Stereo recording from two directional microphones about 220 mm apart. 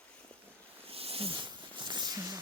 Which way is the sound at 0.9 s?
25° right (ahead or behind).